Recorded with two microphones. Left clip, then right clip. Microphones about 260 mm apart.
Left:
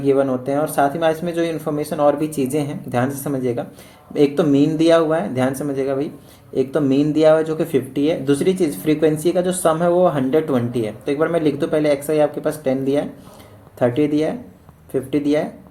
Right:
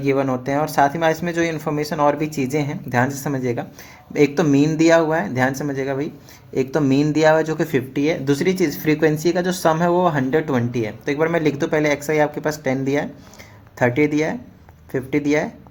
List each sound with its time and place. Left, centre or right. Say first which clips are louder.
0.1 s speech: left 2 dB; right